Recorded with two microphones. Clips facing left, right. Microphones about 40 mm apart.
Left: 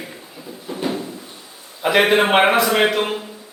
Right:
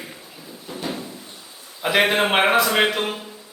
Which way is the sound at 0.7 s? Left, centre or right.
Centre.